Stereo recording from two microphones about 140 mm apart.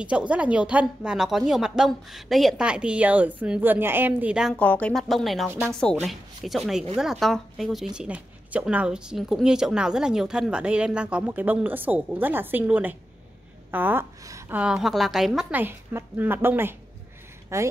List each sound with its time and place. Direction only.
0.0 s speech: 10° right (ahead or behind)
4.6 s a woman's voice: 10° left (ahead or behind)
5.5 s speech: 15° right (ahead or behind)
6.0 s a woman's voice: centre (ahead or behind)
15.6 s speech: 15° right (ahead or behind)